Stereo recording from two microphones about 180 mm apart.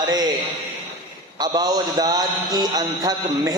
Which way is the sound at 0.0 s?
20° right (ahead or behind).